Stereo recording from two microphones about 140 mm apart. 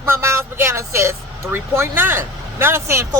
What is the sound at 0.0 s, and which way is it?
Speech, 20° right (ahead or behind).